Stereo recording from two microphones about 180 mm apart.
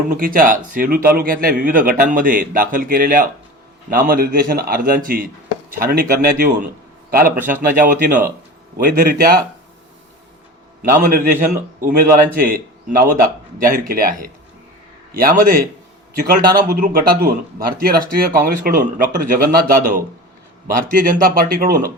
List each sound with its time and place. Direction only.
0.1 s a man's voice: 50° right (ahead or behind)
7.8 s a man's voice: 45° right (ahead or behind)
11.0 s a man's voice: 50° right (ahead or behind)